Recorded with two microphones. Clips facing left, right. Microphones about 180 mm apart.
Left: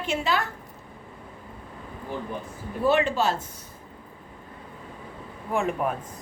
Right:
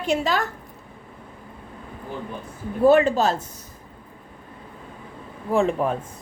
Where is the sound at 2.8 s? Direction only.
45° right (ahead or behind).